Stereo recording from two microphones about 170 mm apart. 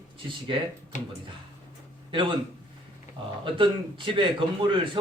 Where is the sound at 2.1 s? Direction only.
30° right (ahead or behind).